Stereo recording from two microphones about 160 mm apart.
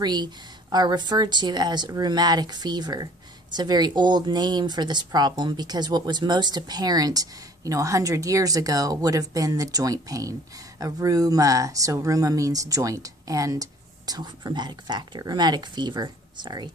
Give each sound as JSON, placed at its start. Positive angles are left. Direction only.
{"t": 0.0, "sound": "a woman's voice", "side_deg": -25}